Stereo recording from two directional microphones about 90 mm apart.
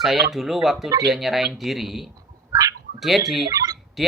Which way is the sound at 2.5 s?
40° right (ahead or behind).